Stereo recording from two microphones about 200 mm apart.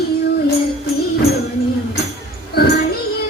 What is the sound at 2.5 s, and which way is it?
Child singing, 50° left (ahead or behind).